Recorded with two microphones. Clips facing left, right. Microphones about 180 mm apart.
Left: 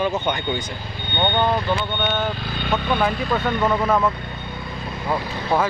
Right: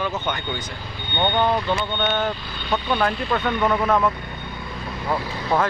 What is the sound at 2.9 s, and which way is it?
Speech, 5° left (ahead or behind).